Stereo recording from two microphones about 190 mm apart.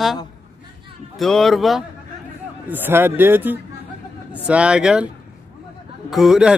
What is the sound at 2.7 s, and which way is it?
A man's voice, 10° right (ahead or behind).